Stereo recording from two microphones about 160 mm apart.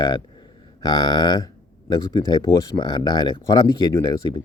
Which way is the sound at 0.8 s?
25° left (ahead or behind).